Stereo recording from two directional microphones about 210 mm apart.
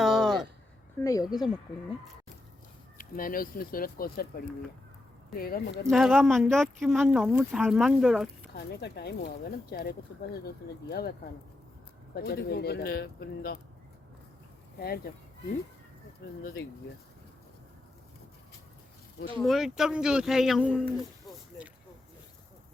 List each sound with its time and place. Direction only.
0.0 s a sound: centre (ahead or behind)
1.0 s speech: 15° left (ahead or behind)
3.0 s speech: 40° left (ahead or behind)
5.9 s speech: 5° right (ahead or behind)
8.5 s speech: 50° left (ahead or behind)
12.1 s speech: 50° left (ahead or behind)
14.8 s speech: 45° left (ahead or behind)
16.4 s speech: 45° left (ahead or behind)
19.5 s speech: centre (ahead or behind)